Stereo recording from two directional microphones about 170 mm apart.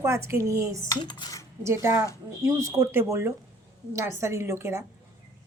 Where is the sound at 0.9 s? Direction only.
25° left (ahead or behind).